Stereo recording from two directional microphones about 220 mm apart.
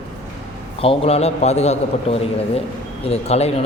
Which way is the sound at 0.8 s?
25° left (ahead or behind).